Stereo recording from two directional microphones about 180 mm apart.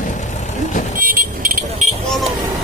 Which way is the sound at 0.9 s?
50° right (ahead or behind).